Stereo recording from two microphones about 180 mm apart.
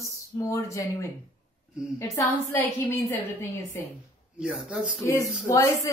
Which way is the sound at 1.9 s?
10° left (ahead or behind).